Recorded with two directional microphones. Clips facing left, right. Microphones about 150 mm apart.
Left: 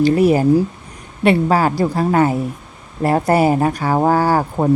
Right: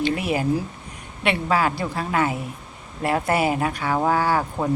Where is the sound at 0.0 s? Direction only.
40° left (ahead or behind).